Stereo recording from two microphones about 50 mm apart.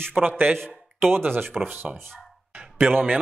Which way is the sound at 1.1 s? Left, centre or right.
Right.